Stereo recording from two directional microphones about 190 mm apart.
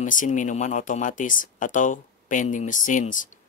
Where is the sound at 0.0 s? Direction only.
45° left (ahead or behind).